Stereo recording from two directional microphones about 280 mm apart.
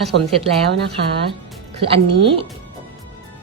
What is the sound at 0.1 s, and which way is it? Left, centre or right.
Speech, right.